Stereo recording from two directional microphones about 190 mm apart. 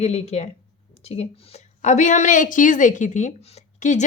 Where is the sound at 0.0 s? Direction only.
35° left (ahead or behind).